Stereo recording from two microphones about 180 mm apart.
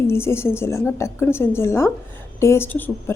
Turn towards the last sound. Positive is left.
turn(degrees=10)  # may be behind; listen again after turning